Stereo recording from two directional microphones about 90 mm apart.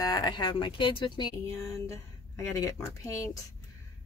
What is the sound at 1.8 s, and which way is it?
Speech, 35° left (ahead or behind).